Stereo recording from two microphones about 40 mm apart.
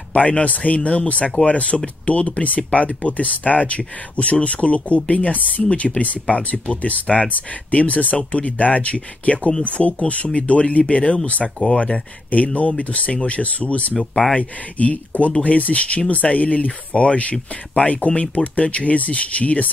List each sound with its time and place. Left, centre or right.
0.1 s speech: left
12.5 s speech: left